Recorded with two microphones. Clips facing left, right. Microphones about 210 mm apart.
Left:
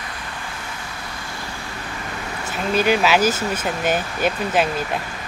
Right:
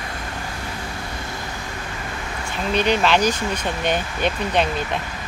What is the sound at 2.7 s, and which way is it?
Speech, 5° left (ahead or behind).